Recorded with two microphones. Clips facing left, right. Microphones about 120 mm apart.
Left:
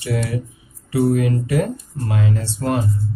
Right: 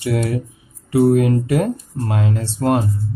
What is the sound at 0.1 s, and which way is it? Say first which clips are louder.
Speech: right 1 dB; 40° right (ahead or behind).